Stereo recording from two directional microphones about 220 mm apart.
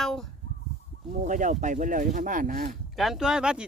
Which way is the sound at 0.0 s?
Centre (ahead or behind).